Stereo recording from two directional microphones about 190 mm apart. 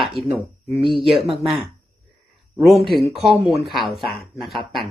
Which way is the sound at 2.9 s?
Centre (ahead or behind).